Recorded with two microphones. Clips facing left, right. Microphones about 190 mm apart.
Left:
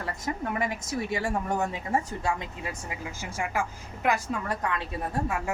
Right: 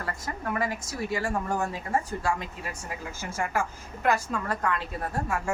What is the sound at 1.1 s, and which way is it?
A woman's voice, 20° left (ahead or behind).